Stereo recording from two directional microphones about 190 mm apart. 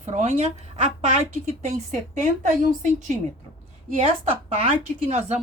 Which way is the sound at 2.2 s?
40° right (ahead or behind).